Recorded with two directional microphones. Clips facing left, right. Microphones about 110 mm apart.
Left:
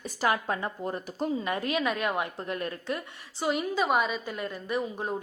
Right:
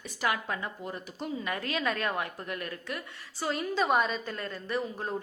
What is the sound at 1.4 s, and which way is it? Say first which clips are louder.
A woman's voice: left 4 dB; 20° left (ahead or behind).